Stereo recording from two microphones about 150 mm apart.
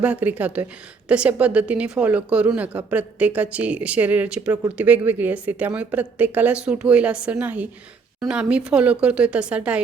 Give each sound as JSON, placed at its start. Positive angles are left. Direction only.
{"t": 0.0, "sound": "a woman's voice", "side_deg": -10}